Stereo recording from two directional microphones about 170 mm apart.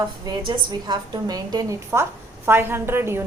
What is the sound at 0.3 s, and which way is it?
A woman's voice, 25° right (ahead or behind).